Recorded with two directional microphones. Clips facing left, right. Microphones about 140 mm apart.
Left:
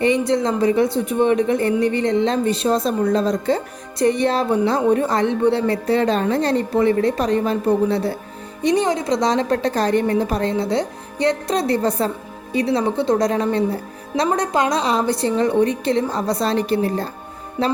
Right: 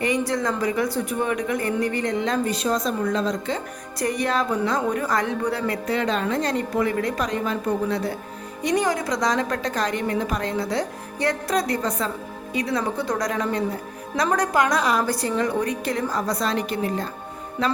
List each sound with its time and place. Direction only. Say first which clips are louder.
0.0 s speech: left 6 dB; 25° left (ahead or behind)
3.9 s a woman's voice: left 6 dB; 25° left (ahead or behind)